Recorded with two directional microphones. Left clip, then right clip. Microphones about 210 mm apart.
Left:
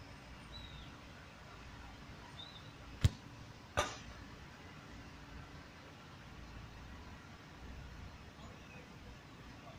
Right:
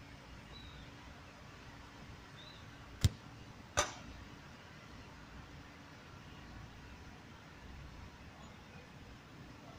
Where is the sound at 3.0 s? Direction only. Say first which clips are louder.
Right 1 dB; 35° right (ahead or behind).